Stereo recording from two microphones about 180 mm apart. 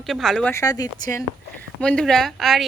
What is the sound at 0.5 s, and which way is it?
Speech, 20° left (ahead or behind).